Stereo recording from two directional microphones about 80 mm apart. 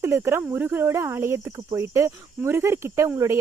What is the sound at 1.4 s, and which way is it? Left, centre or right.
Speech, right.